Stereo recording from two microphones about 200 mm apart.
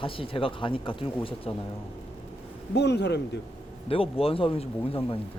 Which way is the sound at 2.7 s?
60° left (ahead or behind).